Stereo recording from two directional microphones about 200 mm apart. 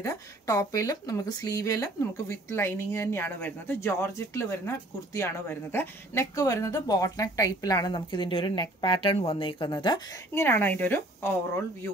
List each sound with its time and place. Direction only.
0.0 s speech: 15° left (ahead or behind)